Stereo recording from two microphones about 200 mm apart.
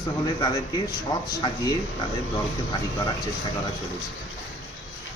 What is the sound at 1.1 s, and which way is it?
Speech, 20° left (ahead or behind).